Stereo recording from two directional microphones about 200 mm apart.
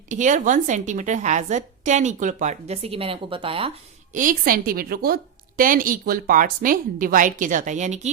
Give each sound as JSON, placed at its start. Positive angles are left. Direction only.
{"t": 0.1, "sound": "a woman's voice", "side_deg": -40}
{"t": 4.1, "sound": "a woman's voice", "side_deg": -40}